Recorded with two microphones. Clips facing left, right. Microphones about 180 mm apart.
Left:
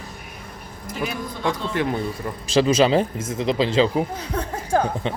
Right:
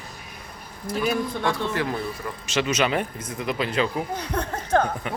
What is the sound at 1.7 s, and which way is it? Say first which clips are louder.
Speech: left 3 dB; 25° left (ahead or behind).